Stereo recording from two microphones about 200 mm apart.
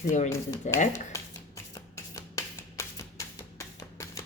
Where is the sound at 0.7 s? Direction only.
35° left (ahead or behind).